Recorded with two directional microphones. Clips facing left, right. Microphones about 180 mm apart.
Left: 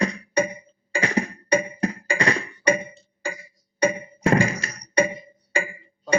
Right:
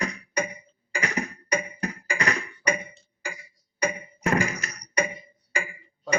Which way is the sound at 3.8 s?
30° left (ahead or behind).